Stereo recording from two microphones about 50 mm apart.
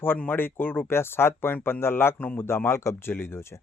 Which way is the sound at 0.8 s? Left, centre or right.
Left.